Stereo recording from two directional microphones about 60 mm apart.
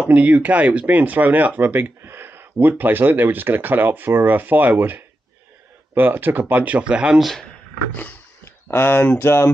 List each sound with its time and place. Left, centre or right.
0.0 s speech: right
7.2 s speech: centre
7.9 s roaring cats: left
8.5 s speech: left